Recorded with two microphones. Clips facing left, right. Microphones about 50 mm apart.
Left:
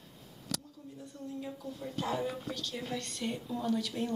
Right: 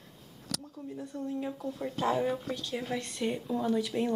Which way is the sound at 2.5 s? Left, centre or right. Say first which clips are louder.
Right 4 dB; right.